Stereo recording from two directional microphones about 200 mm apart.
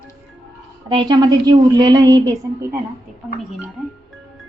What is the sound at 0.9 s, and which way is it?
A woman's voice, 20° right (ahead or behind).